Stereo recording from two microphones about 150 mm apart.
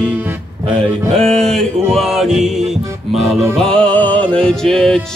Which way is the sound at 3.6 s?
5° left (ahead or behind).